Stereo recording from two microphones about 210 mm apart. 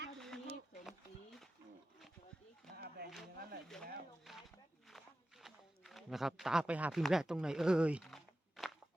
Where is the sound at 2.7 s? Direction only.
50° right (ahead or behind).